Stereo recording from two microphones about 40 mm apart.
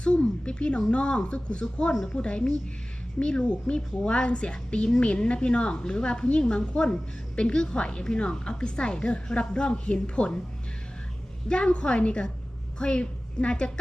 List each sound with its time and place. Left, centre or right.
0.0 s a sound: left
0.9 s a woman's voice: left
11.4 s a woman's voice: left